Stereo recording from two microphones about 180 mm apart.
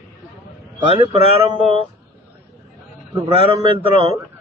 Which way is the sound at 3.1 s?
25° right (ahead or behind).